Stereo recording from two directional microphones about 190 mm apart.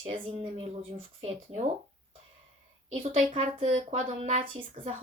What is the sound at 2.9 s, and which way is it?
Speech, 35° right (ahead or behind).